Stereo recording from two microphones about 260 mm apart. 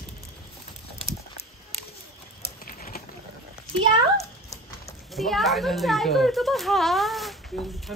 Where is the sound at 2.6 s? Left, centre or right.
Left.